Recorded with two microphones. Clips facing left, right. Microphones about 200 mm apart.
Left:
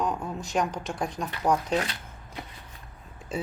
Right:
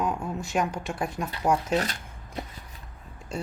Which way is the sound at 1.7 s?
40° right (ahead or behind).